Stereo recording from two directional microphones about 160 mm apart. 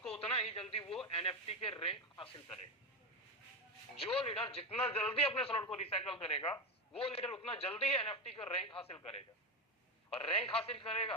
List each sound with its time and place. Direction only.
0.1 s radio: 35° left (ahead or behind)
1.0 s a man's voice: 35° left (ahead or behind)
4.0 s a man's voice: 35° left (ahead or behind)
10.1 s a man's voice: 35° left (ahead or behind)